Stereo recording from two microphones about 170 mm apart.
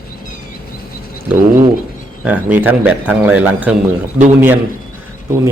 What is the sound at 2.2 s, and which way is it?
A man's voice, 10° right (ahead or behind).